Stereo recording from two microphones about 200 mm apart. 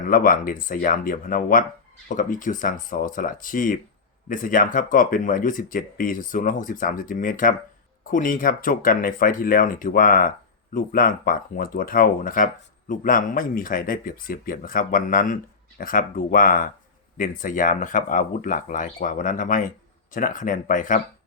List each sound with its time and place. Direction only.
0.0 s speech: 45° left (ahead or behind)